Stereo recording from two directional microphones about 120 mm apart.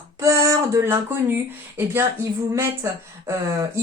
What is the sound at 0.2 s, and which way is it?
Speech, 25° right (ahead or behind).